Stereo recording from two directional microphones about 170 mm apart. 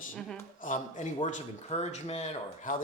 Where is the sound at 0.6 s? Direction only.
50° left (ahead or behind).